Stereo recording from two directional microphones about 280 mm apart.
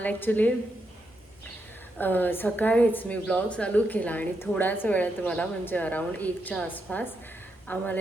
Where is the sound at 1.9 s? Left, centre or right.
Centre.